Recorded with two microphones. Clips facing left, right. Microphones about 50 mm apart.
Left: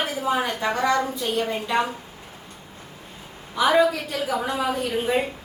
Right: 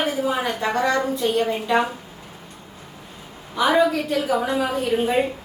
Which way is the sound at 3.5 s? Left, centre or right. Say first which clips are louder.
Right 1 dB; centre.